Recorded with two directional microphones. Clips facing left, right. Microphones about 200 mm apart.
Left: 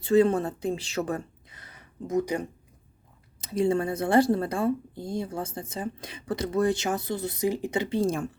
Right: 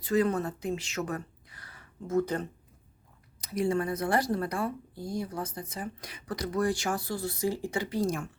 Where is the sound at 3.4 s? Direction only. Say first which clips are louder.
Left 4 dB; 25° left (ahead or behind).